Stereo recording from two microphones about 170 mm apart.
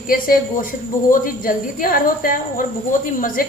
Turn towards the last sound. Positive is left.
turn(degrees=55)  # may be behind; listen again after turning